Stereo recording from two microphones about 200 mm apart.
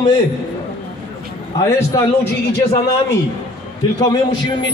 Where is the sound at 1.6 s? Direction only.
15° left (ahead or behind).